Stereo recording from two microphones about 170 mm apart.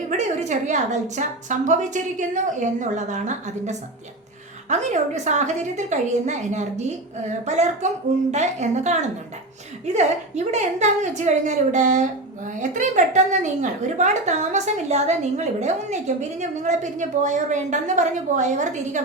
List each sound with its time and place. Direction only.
0.2 s a woman's voice: 45° right (ahead or behind)